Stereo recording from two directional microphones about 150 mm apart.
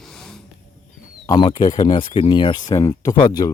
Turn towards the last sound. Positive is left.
turn(degrees=30)  # may be behind; listen again after turning